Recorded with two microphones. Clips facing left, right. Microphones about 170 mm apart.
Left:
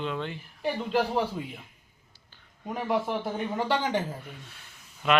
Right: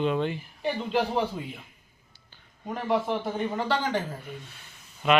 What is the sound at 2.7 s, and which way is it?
A man's voice, 5° left (ahead or behind).